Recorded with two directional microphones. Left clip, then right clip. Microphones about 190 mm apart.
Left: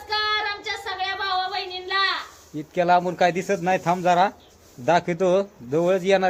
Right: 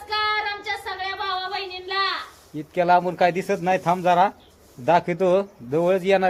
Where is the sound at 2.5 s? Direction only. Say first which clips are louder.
Right 1 dB; 10° right (ahead or behind).